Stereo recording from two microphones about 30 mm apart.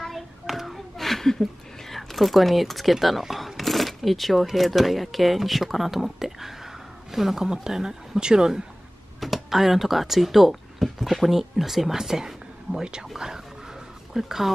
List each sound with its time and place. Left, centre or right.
0.1 s child singing: centre
0.9 s a sound: centre
1.4 s speech: centre; by 8.6 s right
9.2 s a woman's voice: centre